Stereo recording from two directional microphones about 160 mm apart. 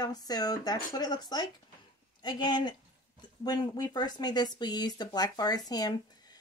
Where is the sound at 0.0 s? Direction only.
25° left (ahead or behind).